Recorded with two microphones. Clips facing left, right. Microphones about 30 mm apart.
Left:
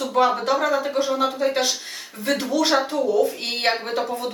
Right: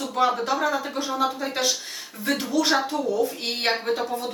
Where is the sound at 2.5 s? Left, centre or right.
Centre.